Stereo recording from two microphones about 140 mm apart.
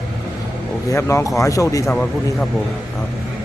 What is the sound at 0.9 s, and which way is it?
Speech, 20° left (ahead or behind).